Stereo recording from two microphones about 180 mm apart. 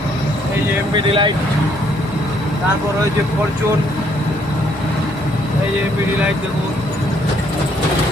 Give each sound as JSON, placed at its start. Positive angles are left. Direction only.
{"t": 0.9, "sound": "speech", "side_deg": -30}